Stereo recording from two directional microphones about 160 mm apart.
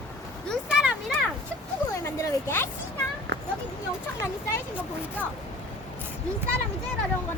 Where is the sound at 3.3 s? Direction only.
90° right.